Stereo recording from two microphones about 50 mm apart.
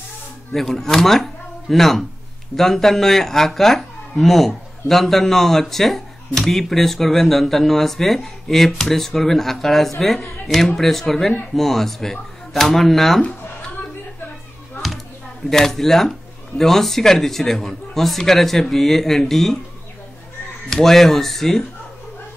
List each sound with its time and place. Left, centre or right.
0.6 s speech: centre
15.5 s speech: centre
20.7 s speech: centre